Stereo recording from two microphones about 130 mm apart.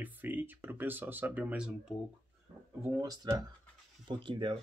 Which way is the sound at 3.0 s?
30° right (ahead or behind).